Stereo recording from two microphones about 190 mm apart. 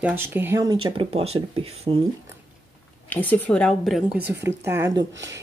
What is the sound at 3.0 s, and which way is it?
A woman's voice, 10° left (ahead or behind).